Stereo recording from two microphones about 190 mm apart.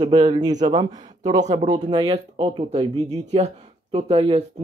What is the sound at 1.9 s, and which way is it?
Speech, 25° right (ahead or behind).